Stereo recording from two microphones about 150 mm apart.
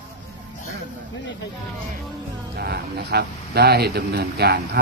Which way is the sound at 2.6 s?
90° right.